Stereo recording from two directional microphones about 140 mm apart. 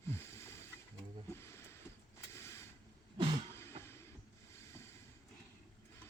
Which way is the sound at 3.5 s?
15° left (ahead or behind).